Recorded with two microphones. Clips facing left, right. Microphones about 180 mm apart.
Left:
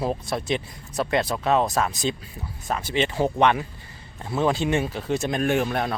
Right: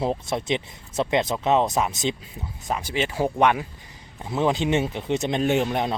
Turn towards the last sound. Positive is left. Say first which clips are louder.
# right 1 dB
turn(degrees=-20)  # may be behind; listen again after turning